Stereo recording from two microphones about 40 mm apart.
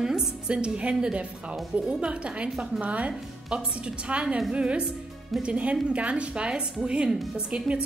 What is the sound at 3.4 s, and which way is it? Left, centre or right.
A woman's voice, right.